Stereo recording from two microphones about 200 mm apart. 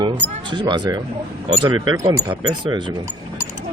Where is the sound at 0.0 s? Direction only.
25° right (ahead or behind).